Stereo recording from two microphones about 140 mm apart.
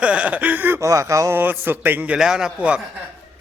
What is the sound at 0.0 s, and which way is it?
Speech, 10° right (ahead or behind).